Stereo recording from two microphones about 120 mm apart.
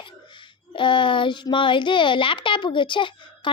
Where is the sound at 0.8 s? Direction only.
45° left (ahead or behind).